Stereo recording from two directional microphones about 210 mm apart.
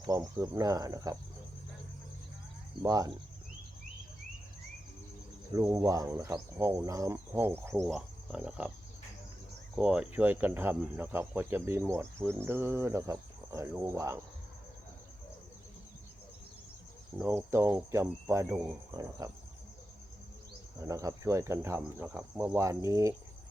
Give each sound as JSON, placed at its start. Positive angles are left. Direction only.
{"t": 0.0, "sound": "speech", "side_deg": -15}
{"t": 2.8, "sound": "speech", "side_deg": -15}
{"t": 5.5, "sound": "speech", "side_deg": -15}
{"t": 7.8, "sound": "speech", "side_deg": 0}
{"t": 9.7, "sound": "speech", "side_deg": -5}
{"t": 17.2, "sound": "speech", "side_deg": -10}
{"t": 20.7, "sound": "speech", "side_deg": -15}